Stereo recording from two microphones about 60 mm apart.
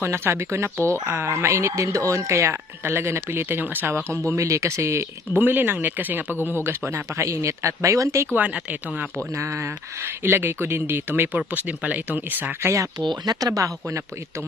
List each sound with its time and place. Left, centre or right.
0.0 s speech: right
4.3 s speech: right
5.3 s speech: right
7.1 s speech: right
8.4 s speech: right
9.3 s speech: right
13.4 s speech: right